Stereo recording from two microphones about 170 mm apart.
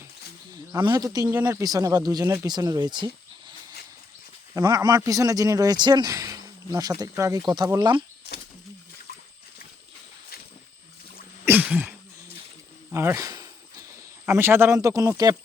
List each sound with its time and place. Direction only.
0.5 s a man's voice: 25° right (ahead or behind)
4.5 s a man's voice: 20° right (ahead or behind)
11.4 s cough: 10° right (ahead or behind)
12.9 s a sound: 15° right (ahead or behind)
14.3 s speech: 15° right (ahead or behind)